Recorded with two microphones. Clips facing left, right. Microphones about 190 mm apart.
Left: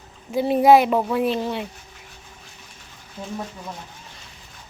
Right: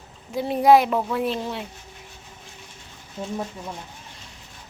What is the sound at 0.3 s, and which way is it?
Speech, 5° left (ahead or behind).